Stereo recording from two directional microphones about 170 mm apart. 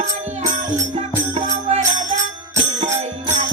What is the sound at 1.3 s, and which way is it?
Music, 40° right (ahead or behind).